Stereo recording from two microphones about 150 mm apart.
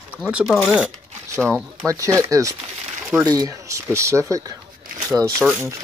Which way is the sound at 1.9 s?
20° right (ahead or behind).